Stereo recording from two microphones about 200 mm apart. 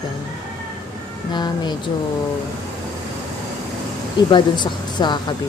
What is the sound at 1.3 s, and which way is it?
Speech, 20° left (ahead or behind).